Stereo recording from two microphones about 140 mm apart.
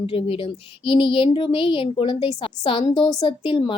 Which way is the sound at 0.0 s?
40° left (ahead or behind).